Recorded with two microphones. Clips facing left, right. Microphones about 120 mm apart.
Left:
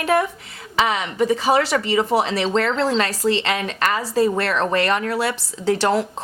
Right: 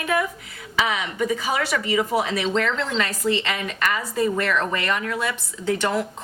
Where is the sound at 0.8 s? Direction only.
30° left (ahead or behind).